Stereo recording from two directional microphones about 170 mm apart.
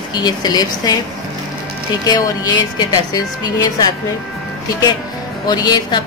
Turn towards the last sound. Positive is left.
turn(degrees=25)  # may be behind; listen again after turning